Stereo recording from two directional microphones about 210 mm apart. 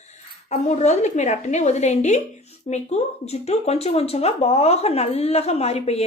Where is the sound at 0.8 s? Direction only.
35° left (ahead or behind).